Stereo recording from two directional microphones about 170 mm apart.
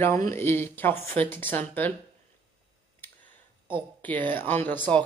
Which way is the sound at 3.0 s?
10° left (ahead or behind).